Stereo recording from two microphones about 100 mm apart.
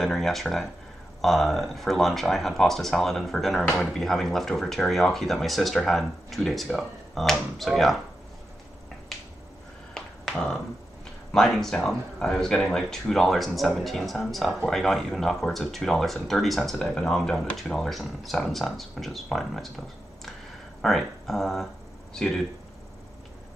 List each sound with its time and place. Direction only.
0.0 s speech: 5° left (ahead or behind)
9.9 s a sound: 5° left (ahead or behind)
11.3 s speech: 5° left (ahead or behind)
20.8 s speech: centre (ahead or behind)